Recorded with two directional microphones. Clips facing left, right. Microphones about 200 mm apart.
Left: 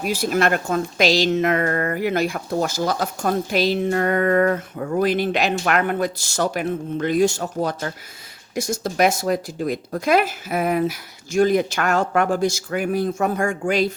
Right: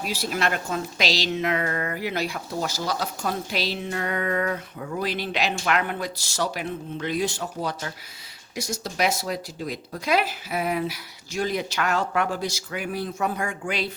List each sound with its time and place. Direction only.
0.0 s a woman's voice: 50° left (ahead or behind)